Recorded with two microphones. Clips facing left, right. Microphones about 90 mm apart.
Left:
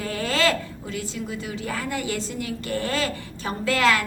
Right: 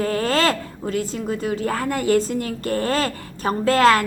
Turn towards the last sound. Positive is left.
turn(degrees=-40)  # may be behind; listen again after turning